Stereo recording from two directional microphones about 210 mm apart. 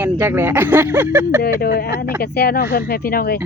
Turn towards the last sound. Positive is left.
turn(degrees=45)  # may be behind; listen again after turning